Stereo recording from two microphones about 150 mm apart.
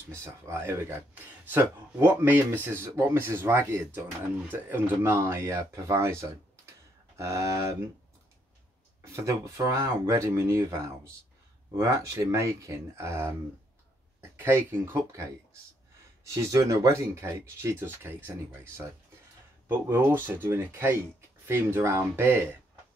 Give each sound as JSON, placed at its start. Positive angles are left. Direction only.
{"t": 0.1, "sound": "speech", "side_deg": -15}
{"t": 7.2, "sound": "speech", "side_deg": -20}
{"t": 9.0, "sound": "speech", "side_deg": -20}
{"t": 14.3, "sound": "speech", "side_deg": -15}
{"t": 16.3, "sound": "speech", "side_deg": -20}